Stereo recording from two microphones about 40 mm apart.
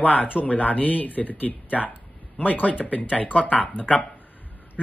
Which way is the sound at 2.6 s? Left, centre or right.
Left.